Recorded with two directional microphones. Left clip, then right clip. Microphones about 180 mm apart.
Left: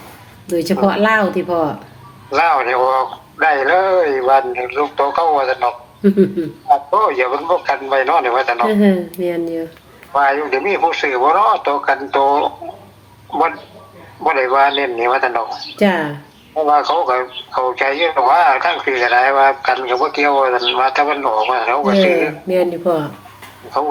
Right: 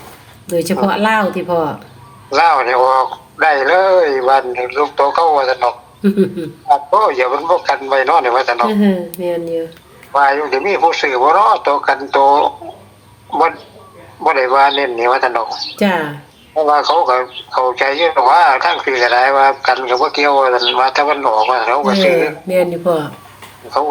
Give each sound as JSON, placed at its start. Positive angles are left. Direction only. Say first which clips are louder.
{"t": 0.4, "sound": "speech", "louder": "right 1 dB", "side_deg": -10}
{"t": 6.1, "sound": "speech", "louder": "left 1 dB", "side_deg": -10}
{"t": 6.7, "sound": "speech", "louder": "right 2 dB", "side_deg": -20}
{"t": 8.7, "sound": "speech", "louder": "left 1 dB", "side_deg": -5}
{"t": 10.1, "sound": "speech", "louder": "right 2 dB", "side_deg": -20}
{"t": 14.3, "sound": "speech", "louder": "right 2 dB", "side_deg": -20}